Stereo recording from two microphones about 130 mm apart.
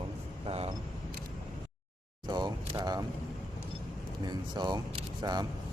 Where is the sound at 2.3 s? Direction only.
30° right (ahead or behind).